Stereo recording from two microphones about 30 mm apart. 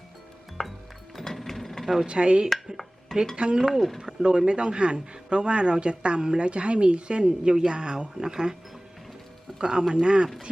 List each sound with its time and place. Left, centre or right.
0.6 s music: centre
1.1 s a sound: centre
2.0 s speech: right
3.8 s speech: centre
4.0 s speech: right
9.6 s speech: right